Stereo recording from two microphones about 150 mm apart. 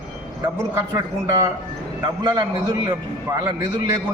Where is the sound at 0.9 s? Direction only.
25° right (ahead or behind).